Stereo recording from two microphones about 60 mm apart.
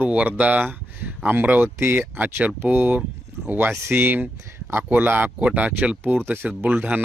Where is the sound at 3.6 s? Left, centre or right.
Right.